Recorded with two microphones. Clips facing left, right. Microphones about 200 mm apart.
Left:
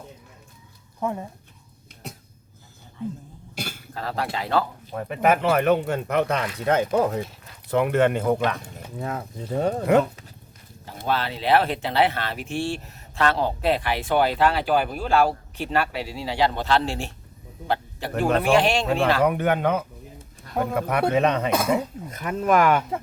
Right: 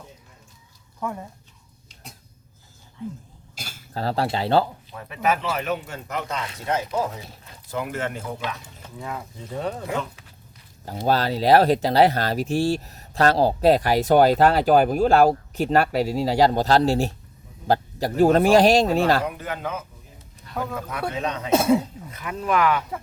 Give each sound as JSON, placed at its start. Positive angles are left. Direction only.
{"t": 0.9, "sound": "speech", "side_deg": 20}
{"t": 3.5, "sound": "cough", "side_deg": 60}
{"t": 3.9, "sound": "speech", "side_deg": -30}
{"t": 4.9, "sound": "speech", "side_deg": 50}
{"t": 7.7, "sound": "speech", "side_deg": 65}
{"t": 9.0, "sound": "speech", "side_deg": 40}
{"t": 11.0, "sound": "speech", "side_deg": -40}
{"t": 18.2, "sound": "speech", "side_deg": -40}
{"t": 19.2, "sound": "speech", "side_deg": 65}
{"t": 22.1, "sound": "speech", "side_deg": 45}